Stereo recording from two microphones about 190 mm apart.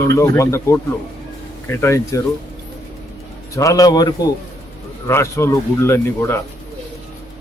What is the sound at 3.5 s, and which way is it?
A man's voice, 15° left (ahead or behind).